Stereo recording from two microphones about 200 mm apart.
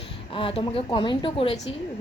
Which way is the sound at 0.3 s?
25° left (ahead or behind).